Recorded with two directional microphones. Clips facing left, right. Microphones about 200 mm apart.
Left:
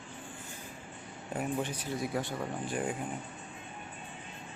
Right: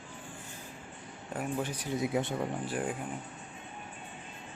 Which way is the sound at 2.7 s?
5° right (ahead or behind).